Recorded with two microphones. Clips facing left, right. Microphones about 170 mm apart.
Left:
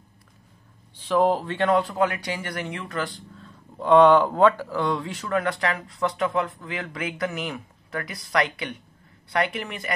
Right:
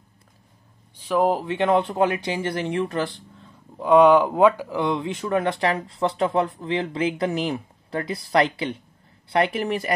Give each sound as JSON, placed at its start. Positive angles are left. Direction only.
{"t": 0.9, "sound": "speech", "side_deg": -10}
{"t": 1.8, "sound": "speech", "side_deg": -25}
{"t": 3.7, "sound": "a woman's voice", "side_deg": -10}